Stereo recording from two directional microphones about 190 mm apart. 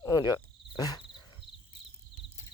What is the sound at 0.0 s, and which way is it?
Cricket, 20° left (ahead or behind).